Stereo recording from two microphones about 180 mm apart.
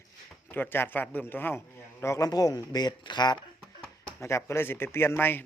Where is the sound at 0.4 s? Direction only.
10° left (ahead or behind).